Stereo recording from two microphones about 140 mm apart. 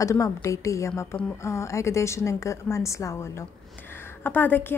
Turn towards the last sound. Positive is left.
turn(degrees=15)  # may be behind; listen again after turning